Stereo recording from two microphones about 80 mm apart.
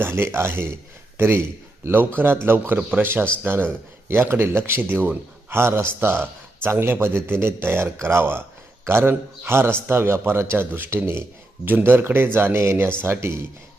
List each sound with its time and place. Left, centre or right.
0.0 s speech: right